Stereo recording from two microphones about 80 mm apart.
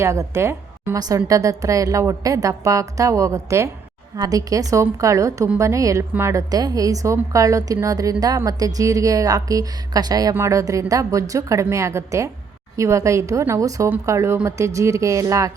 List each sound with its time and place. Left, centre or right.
0.0 s a woman's voice: right
0.9 s a woman's voice: right
6.5 s a woman's voice: right
10.3 s a woman's voice: right